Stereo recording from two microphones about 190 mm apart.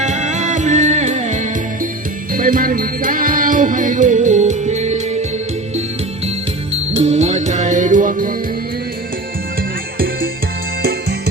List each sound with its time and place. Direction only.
0.0 s music: 40° right (ahead or behind)
6.9 s music: 35° right (ahead or behind)